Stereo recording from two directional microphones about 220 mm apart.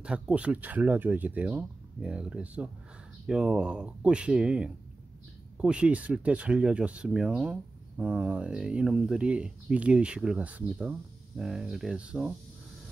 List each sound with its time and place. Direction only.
0.0 s speech: 5° right (ahead or behind)